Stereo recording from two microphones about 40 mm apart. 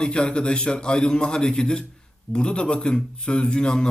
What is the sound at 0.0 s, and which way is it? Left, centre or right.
A man's voice, left.